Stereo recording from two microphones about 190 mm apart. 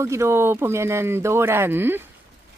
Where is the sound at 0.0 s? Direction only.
15° right (ahead or behind).